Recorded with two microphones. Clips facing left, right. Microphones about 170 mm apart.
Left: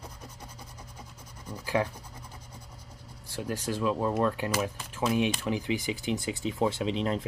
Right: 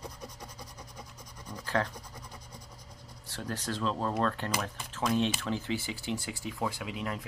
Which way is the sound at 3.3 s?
10° left (ahead or behind).